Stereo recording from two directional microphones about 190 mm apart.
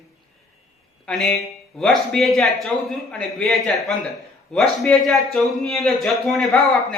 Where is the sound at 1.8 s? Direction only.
Centre (ahead or behind).